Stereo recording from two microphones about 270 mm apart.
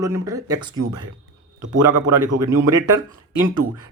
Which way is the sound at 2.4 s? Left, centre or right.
Centre.